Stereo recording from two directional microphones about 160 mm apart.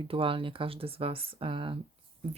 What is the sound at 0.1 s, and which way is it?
Speech, 35° right (ahead or behind).